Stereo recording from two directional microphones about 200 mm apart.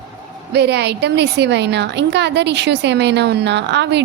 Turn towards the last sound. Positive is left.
turn(degrees=-60)  # may be behind; listen again after turning